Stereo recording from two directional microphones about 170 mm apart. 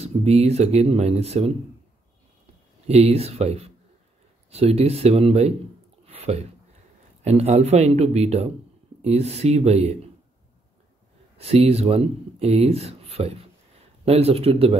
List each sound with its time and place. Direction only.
0.0 s speech: 40° right (ahead or behind)
2.9 s speech: 35° right (ahead or behind)
6.0 s a sound: 35° right (ahead or behind)
7.2 s speech: 40° right (ahead or behind)
11.3 s speech: 35° right (ahead or behind)